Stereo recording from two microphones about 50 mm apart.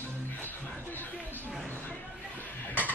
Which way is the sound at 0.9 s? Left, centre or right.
Left.